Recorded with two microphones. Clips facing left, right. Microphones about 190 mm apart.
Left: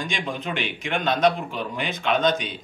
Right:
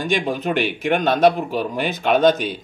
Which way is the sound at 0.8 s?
50° right (ahead or behind).